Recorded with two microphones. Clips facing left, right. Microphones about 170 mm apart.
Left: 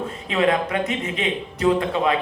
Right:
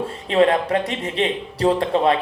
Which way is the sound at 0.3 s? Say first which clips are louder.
Right 4 dB; 35° right (ahead or behind).